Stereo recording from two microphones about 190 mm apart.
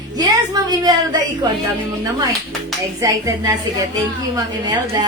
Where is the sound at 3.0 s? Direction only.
20° right (ahead or behind).